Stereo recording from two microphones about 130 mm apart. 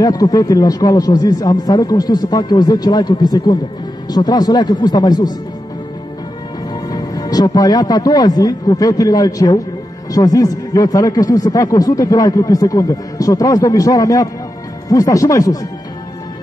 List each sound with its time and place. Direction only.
0.0 s speech: 30° left (ahead or behind)
6.9 s speech: 30° left (ahead or behind)